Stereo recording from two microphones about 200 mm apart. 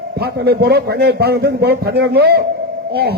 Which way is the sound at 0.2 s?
55° right (ahead or behind).